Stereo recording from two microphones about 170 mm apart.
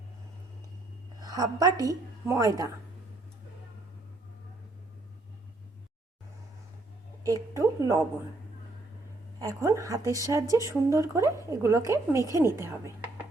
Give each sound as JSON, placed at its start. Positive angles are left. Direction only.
{"t": 1.2, "sound": "a woman's voice", "side_deg": -20}
{"t": 7.3, "sound": "a woman's voice", "side_deg": -20}
{"t": 9.4, "sound": "a woman's voice", "side_deg": -20}